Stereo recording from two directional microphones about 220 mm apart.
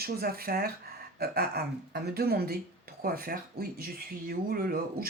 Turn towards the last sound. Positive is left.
turn(degrees=-40)  # may be behind; listen again after turning